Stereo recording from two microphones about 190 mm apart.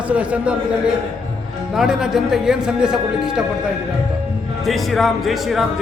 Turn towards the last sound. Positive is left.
turn(degrees=0)  # may be behind; listen again after turning